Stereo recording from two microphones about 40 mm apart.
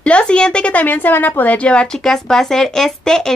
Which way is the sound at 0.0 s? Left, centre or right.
Left.